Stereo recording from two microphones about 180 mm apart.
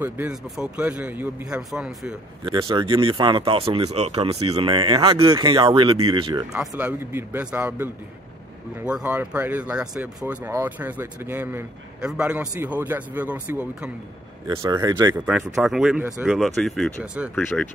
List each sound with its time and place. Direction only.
0.0 s a man's voice: 5° right (ahead or behind)
2.4 s speech: 25° right (ahead or behind)
6.8 s speech: 10° right (ahead or behind)
14.6 s speech: 20° right (ahead or behind)
15.1 s a man's voice: 5° right (ahead or behind)
17.4 s speech: 10° left (ahead or behind)